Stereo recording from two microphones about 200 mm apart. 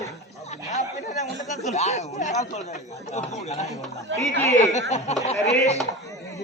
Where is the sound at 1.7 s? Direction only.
35° left (ahead or behind).